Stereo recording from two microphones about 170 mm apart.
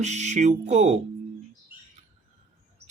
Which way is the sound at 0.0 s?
45° right (ahead or behind).